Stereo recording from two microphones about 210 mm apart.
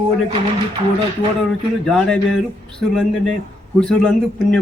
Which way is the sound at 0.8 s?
25° right (ahead or behind).